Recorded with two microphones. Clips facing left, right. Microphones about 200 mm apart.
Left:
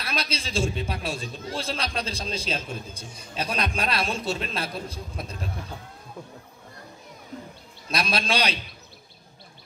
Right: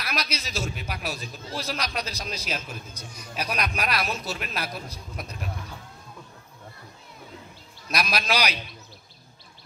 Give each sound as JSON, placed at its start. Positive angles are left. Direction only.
{"t": 0.0, "sound": "speech", "side_deg": 30}
{"t": 7.9, "sound": "speech", "side_deg": 30}